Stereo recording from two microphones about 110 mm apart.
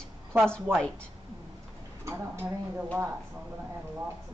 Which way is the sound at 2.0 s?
25° right (ahead or behind).